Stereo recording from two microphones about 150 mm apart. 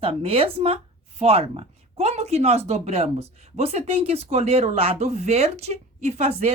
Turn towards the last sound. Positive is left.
turn(degrees=-50)  # may be behind; listen again after turning